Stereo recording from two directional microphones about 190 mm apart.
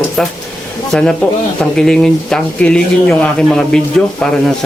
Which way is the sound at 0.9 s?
5° left (ahead or behind).